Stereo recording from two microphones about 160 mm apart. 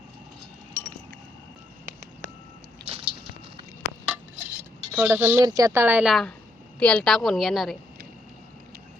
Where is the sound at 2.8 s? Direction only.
35° right (ahead or behind).